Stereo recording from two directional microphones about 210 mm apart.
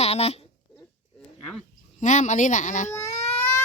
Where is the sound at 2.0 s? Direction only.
35° left (ahead or behind).